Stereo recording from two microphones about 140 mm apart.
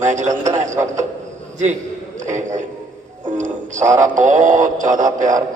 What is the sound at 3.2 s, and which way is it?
Music, 65° right (ahead or behind).